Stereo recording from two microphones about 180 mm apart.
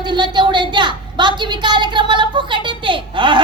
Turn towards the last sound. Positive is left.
turn(degrees=-25)  # may be behind; listen again after turning